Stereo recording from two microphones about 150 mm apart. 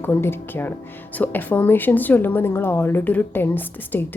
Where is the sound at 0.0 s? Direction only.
15° left (ahead or behind).